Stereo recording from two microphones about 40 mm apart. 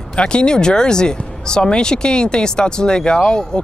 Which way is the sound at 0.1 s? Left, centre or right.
Left.